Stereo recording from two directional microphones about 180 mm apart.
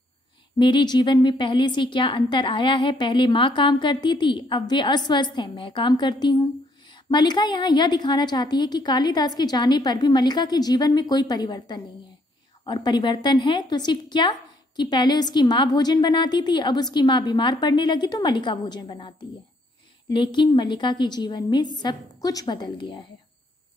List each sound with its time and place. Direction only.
0.6 s a woman's voice: 25° left (ahead or behind)